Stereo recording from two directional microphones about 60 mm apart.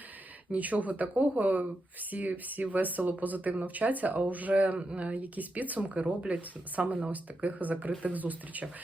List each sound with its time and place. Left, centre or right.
0.5 s speech: right